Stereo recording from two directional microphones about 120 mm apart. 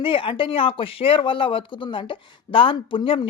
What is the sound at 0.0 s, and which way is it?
Speech, 45° left (ahead or behind).